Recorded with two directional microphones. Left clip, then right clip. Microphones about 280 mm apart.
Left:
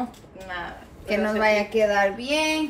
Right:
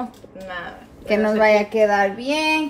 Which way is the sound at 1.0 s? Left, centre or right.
Right.